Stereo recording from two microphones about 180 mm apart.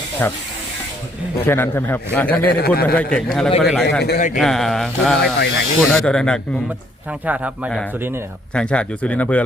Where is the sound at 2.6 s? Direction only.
60° left (ahead or behind).